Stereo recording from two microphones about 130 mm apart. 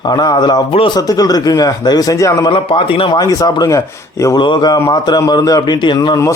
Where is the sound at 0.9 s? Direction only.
30° left (ahead or behind).